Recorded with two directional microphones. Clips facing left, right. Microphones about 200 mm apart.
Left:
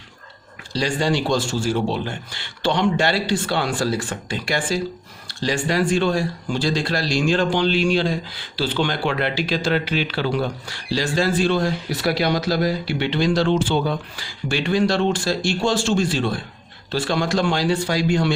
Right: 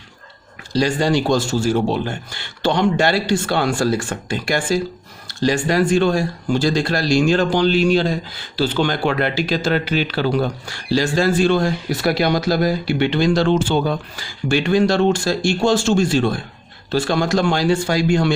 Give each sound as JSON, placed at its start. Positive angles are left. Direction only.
{"t": 0.7, "sound": "speech", "side_deg": -45}